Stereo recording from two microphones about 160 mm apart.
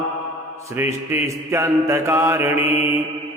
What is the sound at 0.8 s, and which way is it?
Mantra, 15° right (ahead or behind).